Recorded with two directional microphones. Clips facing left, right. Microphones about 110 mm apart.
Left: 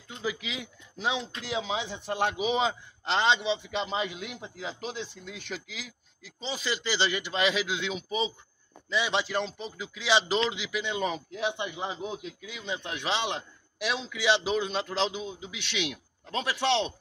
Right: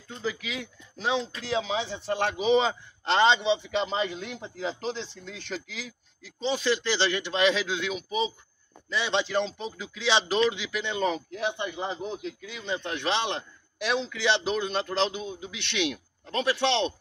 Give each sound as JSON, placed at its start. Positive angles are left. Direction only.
{"t": 0.2, "sound": "a man's voice", "side_deg": 20}
{"t": 7.8, "sound": "a man's voice", "side_deg": 30}
{"t": 8.9, "sound": "a man's voice", "side_deg": 10}